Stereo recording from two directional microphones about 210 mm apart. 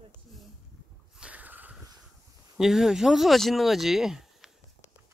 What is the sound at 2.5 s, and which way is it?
Speech, centre (ahead or behind).